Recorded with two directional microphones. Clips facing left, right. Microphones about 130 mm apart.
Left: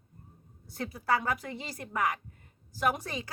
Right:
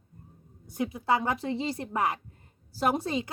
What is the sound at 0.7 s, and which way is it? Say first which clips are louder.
A woman's voice: right 3 dB; 20° right (ahead or behind).